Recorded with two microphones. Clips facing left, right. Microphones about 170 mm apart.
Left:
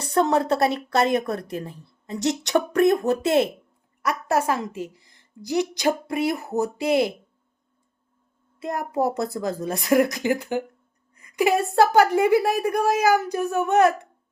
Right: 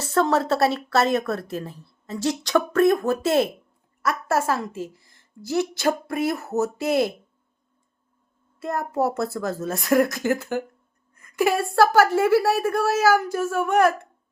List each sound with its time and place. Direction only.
0.0 s a woman's voice: 20° left (ahead or behind)
4.7 s a woman's voice: 45° right (ahead or behind)
5.0 s speech: 15° left (ahead or behind)
8.5 s a child's voice: 15° left (ahead or behind)